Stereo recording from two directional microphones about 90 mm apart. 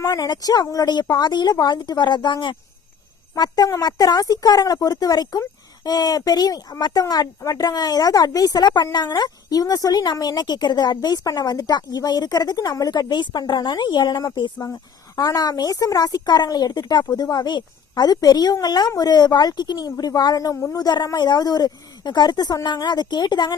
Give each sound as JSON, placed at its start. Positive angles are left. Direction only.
{"t": 0.0, "sound": "speech", "side_deg": 45}
{"t": 3.3, "sound": "speech", "side_deg": 50}
{"t": 14.7, "sound": "speech", "side_deg": 40}